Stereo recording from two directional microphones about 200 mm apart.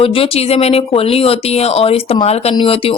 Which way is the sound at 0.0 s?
30° left (ahead or behind).